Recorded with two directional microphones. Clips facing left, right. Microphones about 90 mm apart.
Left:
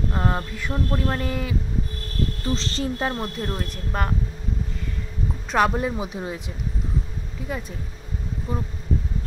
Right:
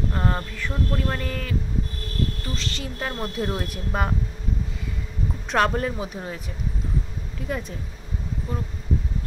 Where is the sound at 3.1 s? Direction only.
Centre (ahead or behind).